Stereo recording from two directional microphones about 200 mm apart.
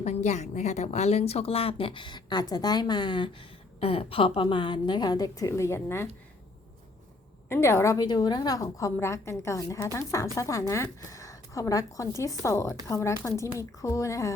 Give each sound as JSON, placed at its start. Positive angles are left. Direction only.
{"t": 0.0, "sound": "a woman's voice", "side_deg": 35}
{"t": 7.4, "sound": "a woman's voice", "side_deg": 10}